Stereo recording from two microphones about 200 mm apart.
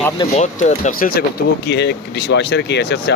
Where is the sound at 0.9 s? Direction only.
45° left (ahead or behind).